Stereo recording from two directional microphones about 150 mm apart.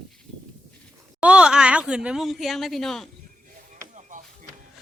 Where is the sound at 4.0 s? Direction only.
55° right (ahead or behind).